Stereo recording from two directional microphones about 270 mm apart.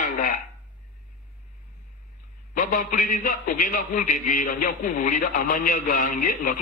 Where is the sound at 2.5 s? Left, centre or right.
Left.